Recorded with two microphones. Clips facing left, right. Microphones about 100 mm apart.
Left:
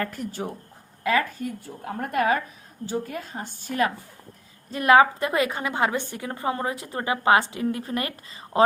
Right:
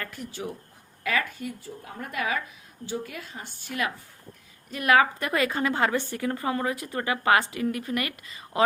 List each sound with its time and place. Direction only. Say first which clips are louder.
0.0 s speech: left 5 dB; 45° left (ahead or behind)
1.0 s a woman's voice: left 5 dB; 30° left (ahead or behind)
1.4 s a woman's voice: left 3 dB; 50° left (ahead or behind)
4.7 s a woman's voice: left 4 dB; 30° left (ahead or behind)